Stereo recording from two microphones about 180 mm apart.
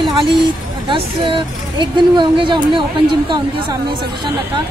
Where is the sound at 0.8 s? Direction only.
25° right (ahead or behind).